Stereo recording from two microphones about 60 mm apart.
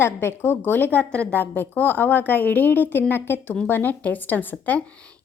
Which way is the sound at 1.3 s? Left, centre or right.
Left.